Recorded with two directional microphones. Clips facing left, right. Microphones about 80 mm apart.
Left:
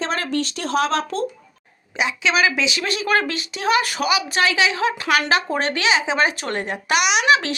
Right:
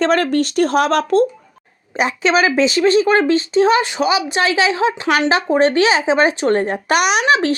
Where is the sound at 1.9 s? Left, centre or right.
Right.